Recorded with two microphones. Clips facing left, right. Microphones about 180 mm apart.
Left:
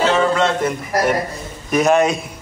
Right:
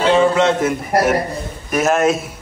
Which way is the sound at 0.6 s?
5° right (ahead or behind).